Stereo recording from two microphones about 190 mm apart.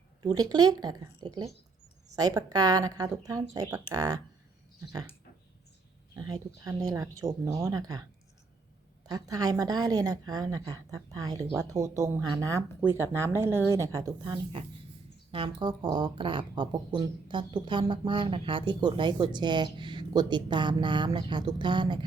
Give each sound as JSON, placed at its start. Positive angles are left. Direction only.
{"t": 0.2, "sound": "speech", "side_deg": -20}
{"t": 6.1, "sound": "speech", "side_deg": -20}
{"t": 9.0, "sound": "speech", "side_deg": -20}